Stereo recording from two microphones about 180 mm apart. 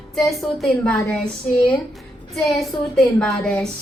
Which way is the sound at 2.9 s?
Centre (ahead or behind).